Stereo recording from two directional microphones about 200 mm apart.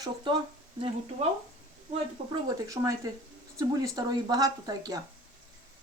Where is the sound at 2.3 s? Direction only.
20° right (ahead or behind).